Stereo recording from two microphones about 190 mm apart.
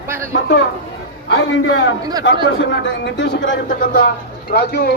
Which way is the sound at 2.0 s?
20° right (ahead or behind).